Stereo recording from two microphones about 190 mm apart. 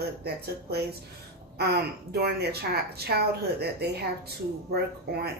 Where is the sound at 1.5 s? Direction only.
60° right (ahead or behind).